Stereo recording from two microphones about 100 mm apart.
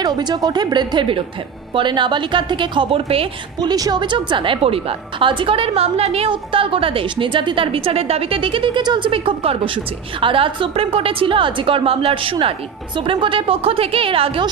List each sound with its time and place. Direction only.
0.0 s a woman's voice: 45° right (ahead or behind); by 3.3 s 70° right (ahead or behind)
3.5 s a woman's voice: 40° right (ahead or behind); by 14.4 s 65° right (ahead or behind)